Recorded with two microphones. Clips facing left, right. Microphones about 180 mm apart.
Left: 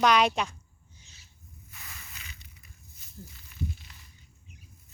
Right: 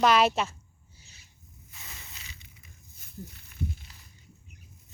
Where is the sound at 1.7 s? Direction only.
25° right (ahead or behind).